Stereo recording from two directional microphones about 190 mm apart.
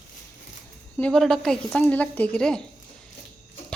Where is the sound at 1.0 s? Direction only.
5° left (ahead or behind).